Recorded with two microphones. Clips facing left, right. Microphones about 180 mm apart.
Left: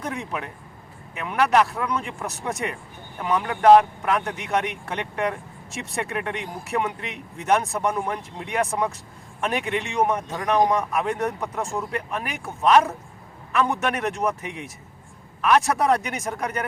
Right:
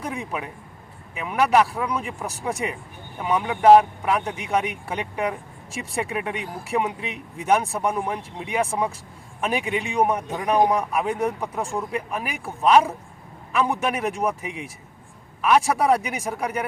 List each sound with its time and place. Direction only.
0.0 s a man's voice: 10° right (ahead or behind)